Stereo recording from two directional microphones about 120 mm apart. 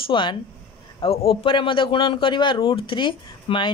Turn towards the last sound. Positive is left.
turn(degrees=45)  # may be behind; listen again after turning